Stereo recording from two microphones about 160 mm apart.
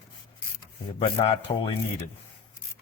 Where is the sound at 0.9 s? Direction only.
35° left (ahead or behind).